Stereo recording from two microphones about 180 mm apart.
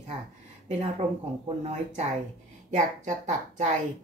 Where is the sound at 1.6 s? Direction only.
40° right (ahead or behind).